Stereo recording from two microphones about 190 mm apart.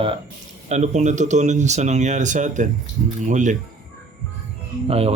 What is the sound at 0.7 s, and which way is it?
Speech, 40° right (ahead or behind).